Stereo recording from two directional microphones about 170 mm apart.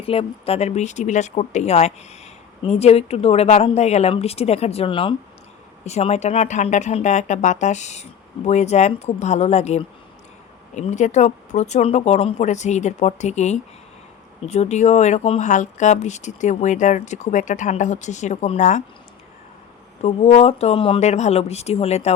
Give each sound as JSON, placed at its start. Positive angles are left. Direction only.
{"t": 0.0, "sound": "speech", "side_deg": 35}
{"t": 20.0, "sound": "speech", "side_deg": 40}